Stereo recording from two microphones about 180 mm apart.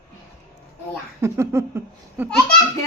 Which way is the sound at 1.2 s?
15° right (ahead or behind).